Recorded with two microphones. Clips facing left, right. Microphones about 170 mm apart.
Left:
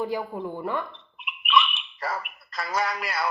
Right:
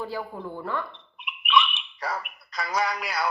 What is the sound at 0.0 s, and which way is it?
Speech, 15° left (ahead or behind).